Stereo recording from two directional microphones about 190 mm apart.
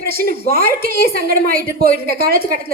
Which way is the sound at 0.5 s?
50° right (ahead or behind).